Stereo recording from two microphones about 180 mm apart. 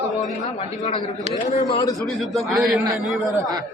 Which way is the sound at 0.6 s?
30° left (ahead or behind).